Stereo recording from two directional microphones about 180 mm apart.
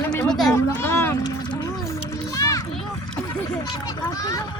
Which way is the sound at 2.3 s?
20° left (ahead or behind).